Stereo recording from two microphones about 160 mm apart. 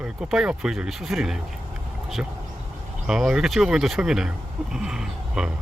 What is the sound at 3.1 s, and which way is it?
Speech, 5° right (ahead or behind).